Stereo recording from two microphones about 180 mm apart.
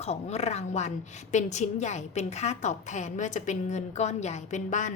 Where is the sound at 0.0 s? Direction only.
35° left (ahead or behind).